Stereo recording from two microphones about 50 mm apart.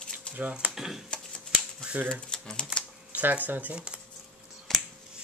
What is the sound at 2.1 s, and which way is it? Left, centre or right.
Speech, centre.